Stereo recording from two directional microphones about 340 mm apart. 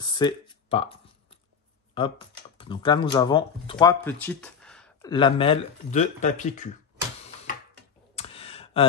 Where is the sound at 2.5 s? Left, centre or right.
Centre.